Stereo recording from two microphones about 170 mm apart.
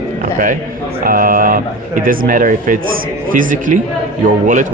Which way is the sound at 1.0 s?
55° right (ahead or behind).